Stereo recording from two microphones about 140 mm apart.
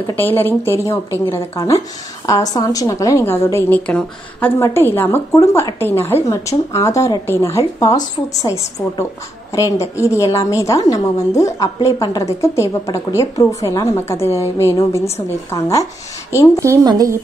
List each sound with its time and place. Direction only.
0.1 s a woman's voice: 15° left (ahead or behind)
16.6 s speech: 25° right (ahead or behind)